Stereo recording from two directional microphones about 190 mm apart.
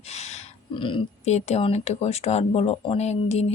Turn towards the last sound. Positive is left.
turn(degrees=35)  # may be behind; listen again after turning